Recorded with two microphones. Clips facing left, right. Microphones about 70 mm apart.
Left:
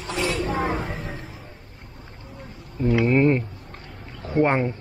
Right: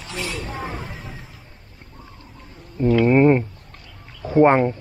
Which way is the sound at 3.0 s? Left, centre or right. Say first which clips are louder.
Right 5 dB; right.